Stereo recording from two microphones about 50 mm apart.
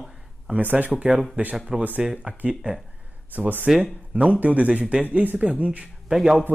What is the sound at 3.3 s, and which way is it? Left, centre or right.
Speech, right.